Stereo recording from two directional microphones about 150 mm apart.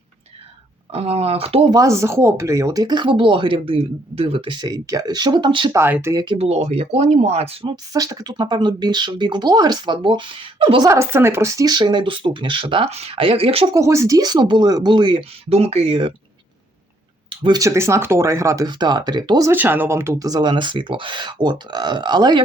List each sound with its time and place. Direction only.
0.9 s speech: 40° right (ahead or behind)
1.7 s speech: 20° right (ahead or behind)
5.7 s speech: 15° right (ahead or behind)
6.1 s speech: 35° right (ahead or behind)
7.9 s speech: 25° right (ahead or behind)
10.8 s speech: 20° right (ahead or behind); by 13.7 s 40° right (ahead or behind)
13.7 s speech: 20° right (ahead or behind)
15.4 s speech: 45° right (ahead or behind)
17.2 s a sound: 30° right (ahead or behind)
17.6 s speech: 20° right (ahead or behind)
19.5 s speech: 15° right (ahead or behind); by 22.4 s 30° right (ahead or behind)